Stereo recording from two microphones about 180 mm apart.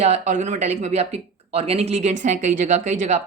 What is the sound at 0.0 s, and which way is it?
Speech, 40° right (ahead or behind).